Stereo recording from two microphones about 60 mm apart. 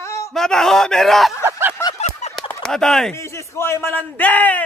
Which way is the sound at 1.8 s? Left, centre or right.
Left.